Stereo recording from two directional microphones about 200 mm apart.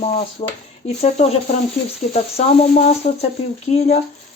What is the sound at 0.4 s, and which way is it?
Speech, 30° left (ahead or behind).